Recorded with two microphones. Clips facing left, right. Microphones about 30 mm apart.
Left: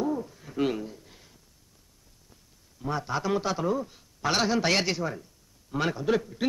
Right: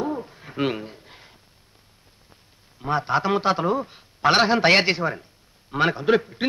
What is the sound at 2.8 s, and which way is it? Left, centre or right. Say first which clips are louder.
Speech: right 7 dB; right.